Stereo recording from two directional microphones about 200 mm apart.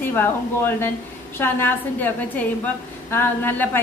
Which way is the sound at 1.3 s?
10° left (ahead or behind).